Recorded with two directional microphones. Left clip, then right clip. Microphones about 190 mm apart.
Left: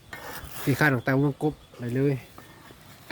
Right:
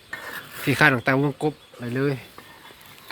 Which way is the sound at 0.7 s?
5° left (ahead or behind).